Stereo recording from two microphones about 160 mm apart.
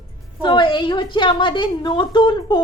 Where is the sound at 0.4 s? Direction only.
30° left (ahead or behind).